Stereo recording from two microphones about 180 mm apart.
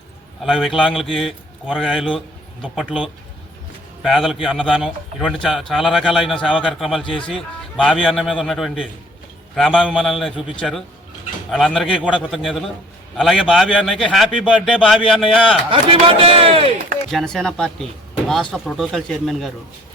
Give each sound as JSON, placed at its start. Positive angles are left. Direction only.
{"t": 0.4, "sound": "a man's voice", "side_deg": 0}
{"t": 15.7, "sound": "speech", "side_deg": -30}
{"t": 17.1, "sound": "a man's voice", "side_deg": 0}